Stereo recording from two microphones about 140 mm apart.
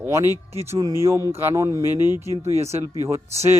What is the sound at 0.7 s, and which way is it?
Speech, 30° right (ahead or behind).